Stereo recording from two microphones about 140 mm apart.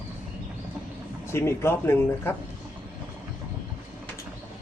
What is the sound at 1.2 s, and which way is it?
Speech, 20° left (ahead or behind).